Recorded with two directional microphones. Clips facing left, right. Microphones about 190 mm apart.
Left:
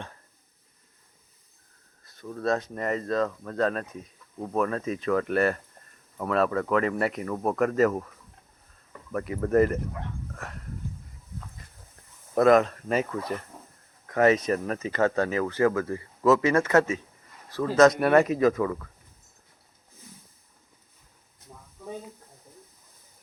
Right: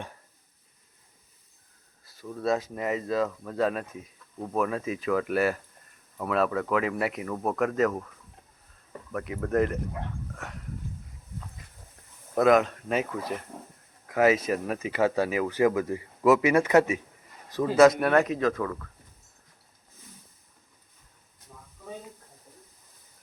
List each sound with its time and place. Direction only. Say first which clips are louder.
2.0 s speech: even; 5° right (ahead or behind)
9.1 s speech: left 4 dB; centre (ahead or behind)
10.3 s a sound: even; centre (ahead or behind)
12.3 s speech: left 2 dB; centre (ahead or behind)
17.7 s speech: even; 5° right (ahead or behind)